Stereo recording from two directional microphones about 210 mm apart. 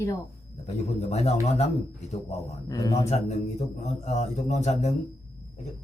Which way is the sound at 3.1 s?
30° left (ahead or behind).